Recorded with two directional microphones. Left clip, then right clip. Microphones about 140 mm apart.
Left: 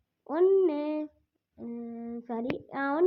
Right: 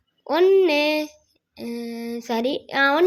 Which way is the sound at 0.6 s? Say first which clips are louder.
Right 10 dB; 20° right (ahead or behind).